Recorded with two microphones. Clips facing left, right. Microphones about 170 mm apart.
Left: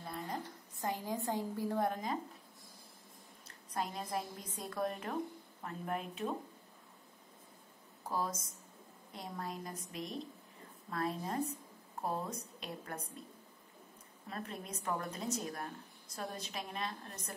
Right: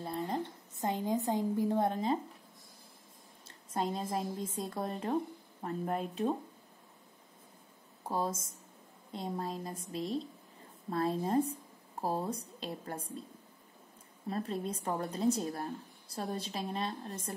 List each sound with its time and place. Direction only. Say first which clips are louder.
0.0 s a woman's voice: right 6 dB; 30° right (ahead or behind)
3.4 s a woman's voice: right 5 dB; 25° right (ahead or behind)
8.0 s a woman's voice: right 3 dB; 25° right (ahead or behind)
14.3 s a woman's voice: right 8 dB; 30° right (ahead or behind)